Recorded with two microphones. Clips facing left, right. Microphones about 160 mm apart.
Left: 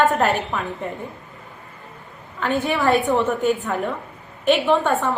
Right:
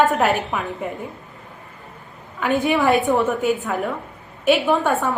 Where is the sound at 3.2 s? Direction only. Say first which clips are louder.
Even; centre (ahead or behind).